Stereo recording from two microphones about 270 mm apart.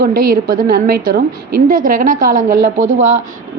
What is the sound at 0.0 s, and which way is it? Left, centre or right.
A woman's voice, right.